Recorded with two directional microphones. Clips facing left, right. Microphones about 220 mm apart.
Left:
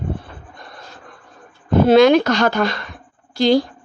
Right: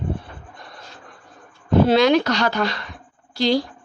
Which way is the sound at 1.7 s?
50° left (ahead or behind).